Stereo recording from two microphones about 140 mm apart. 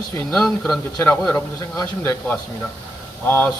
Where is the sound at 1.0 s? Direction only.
20° left (ahead or behind).